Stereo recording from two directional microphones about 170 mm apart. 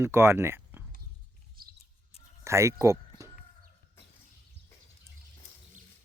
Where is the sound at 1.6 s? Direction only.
60° right (ahead or behind).